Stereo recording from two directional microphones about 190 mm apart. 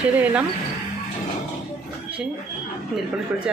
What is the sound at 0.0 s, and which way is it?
Speech, 5° right (ahead or behind).